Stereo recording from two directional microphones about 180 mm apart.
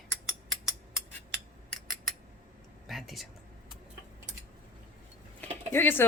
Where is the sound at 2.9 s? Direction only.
Centre (ahead or behind).